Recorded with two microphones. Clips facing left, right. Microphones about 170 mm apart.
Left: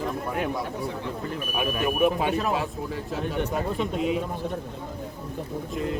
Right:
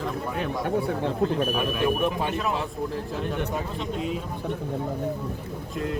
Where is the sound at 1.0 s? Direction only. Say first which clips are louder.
Right 7 dB; 80° right.